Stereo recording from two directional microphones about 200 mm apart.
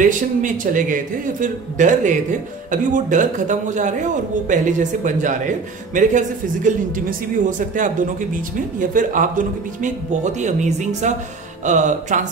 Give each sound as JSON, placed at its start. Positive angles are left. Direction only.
{"t": 0.0, "sound": "a man's voice", "side_deg": -40}